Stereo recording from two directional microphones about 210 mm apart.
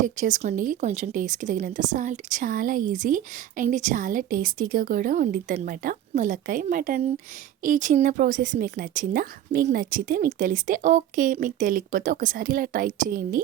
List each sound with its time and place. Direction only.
0.2 s speech: 35° right (ahead or behind)